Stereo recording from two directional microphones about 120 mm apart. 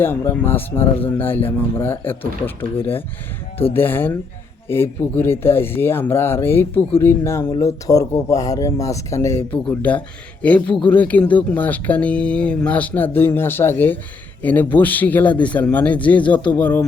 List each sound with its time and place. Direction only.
0.0 s speech: 20° left (ahead or behind)
3.8 s speech: 15° left (ahead or behind)
9.6 s speech: 10° left (ahead or behind)